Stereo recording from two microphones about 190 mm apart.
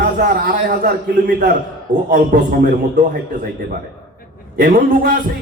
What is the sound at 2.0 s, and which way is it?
Speech, 45° right (ahead or behind).